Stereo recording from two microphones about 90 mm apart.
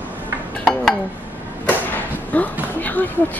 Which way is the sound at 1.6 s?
20° left (ahead or behind).